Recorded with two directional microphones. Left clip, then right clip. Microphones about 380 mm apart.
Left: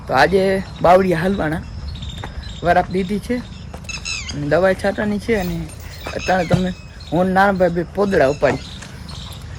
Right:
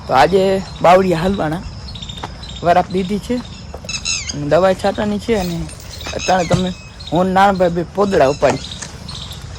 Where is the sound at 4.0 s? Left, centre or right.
Centre.